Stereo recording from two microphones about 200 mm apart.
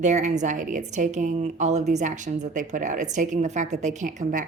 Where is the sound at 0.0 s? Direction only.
35° right (ahead or behind).